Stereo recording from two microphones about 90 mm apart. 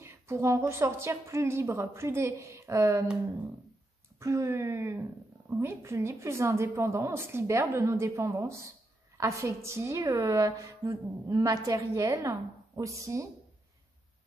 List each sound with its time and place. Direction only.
0.0 s a woman's voice: 30° right (ahead or behind)
4.2 s a woman's voice: 35° right (ahead or behind)